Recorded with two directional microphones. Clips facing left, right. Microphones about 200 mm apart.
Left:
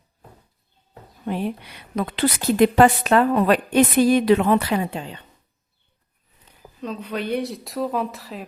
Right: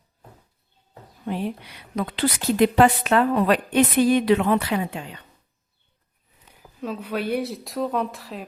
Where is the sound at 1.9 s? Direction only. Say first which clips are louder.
Left 2 dB; 55° left (ahead or behind); by 5.2 s 30° left (ahead or behind).